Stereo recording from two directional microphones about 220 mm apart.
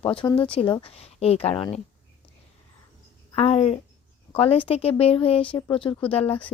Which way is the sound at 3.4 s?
25° left (ahead or behind).